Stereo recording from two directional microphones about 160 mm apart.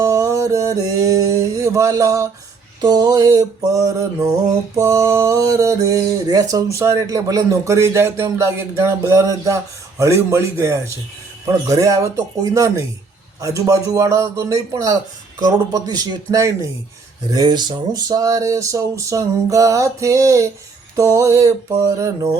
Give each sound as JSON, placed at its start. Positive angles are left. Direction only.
{"t": 0.0, "sound": "a sound", "side_deg": -20}
{"t": 2.8, "sound": "music", "side_deg": -25}
{"t": 10.0, "sound": "a man's voice", "side_deg": -20}
{"t": 11.7, "sound": "music", "side_deg": -20}